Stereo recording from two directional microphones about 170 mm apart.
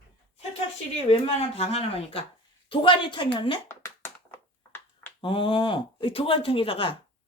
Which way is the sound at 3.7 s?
15° left (ahead or behind).